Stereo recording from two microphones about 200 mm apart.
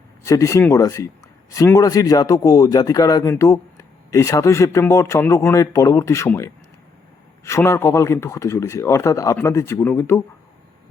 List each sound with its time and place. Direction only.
0.3 s a man's voice: 15° left (ahead or behind)